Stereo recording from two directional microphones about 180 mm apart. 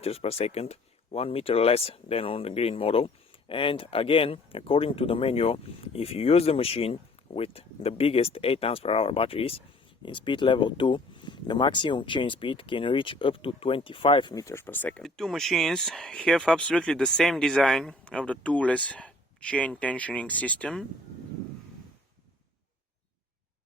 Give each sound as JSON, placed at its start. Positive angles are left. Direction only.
{"t": 0.0, "sound": "speech", "side_deg": 35}